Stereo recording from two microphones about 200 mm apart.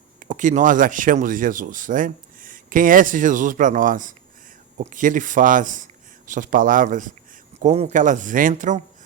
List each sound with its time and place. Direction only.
0.3 s speech: 40° right (ahead or behind)